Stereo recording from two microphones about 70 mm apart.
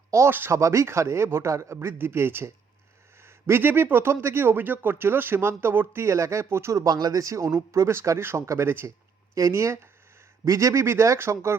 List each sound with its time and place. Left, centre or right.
0.3 s speech: right
0.5 s speech: right
6.9 s speech: right
7.2 s speech: right